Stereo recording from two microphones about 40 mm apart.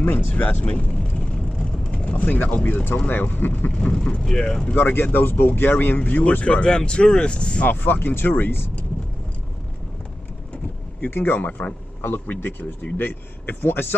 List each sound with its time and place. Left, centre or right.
0.0 s speech: left
0.6 s speech: left
1.1 s vehicle: left
2.1 s speech: left
3.1 s speech: left
3.7 s speech: left
4.7 s speech: left
5.9 s speech: left
7.6 s speech: left
11.0 s speech: left
11.3 s speech: left
12.4 s speech: left